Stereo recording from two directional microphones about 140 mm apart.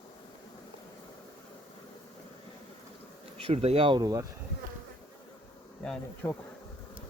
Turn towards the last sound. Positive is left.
turn(degrees=5)  # may be behind; listen again after turning